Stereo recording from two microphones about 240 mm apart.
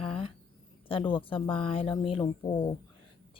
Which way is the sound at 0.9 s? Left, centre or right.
Left.